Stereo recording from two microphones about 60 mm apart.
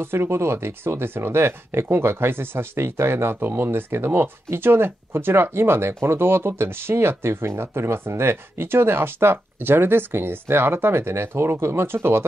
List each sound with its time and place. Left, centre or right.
0.0 s speech: right